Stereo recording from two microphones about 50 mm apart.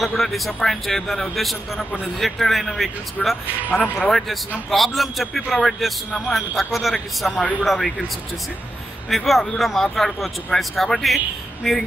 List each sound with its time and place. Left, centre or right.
0.0 s a man's voice: centre
3.7 s speech: left
4.6 s a man's voice: centre
9.1 s a man's voice: centre